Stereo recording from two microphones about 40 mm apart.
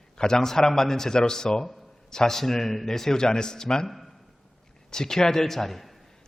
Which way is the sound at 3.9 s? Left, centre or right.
Centre.